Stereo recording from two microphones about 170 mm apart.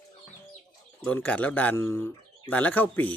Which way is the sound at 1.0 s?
10° left (ahead or behind).